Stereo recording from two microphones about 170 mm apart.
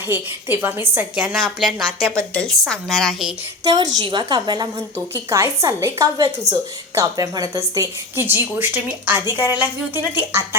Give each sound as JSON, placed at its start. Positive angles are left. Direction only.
{"t": 0.1, "sound": "a woman's voice", "side_deg": -10}
{"t": 3.6, "sound": "a woman's voice", "side_deg": -20}